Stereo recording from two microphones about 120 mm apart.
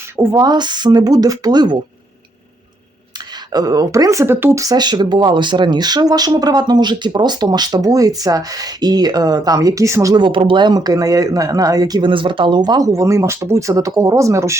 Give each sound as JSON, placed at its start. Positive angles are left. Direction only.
{"t": 0.3, "sound": "speech", "side_deg": -35}
{"t": 3.5, "sound": "speech", "side_deg": -30}
{"t": 10.2, "sound": "speech", "side_deg": -45}